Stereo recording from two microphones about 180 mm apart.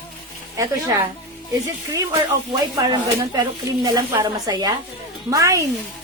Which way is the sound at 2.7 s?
20° right (ahead or behind).